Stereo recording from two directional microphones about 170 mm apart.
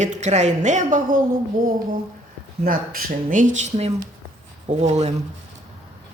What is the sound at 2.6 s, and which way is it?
A woman's voice, 55° right (ahead or behind).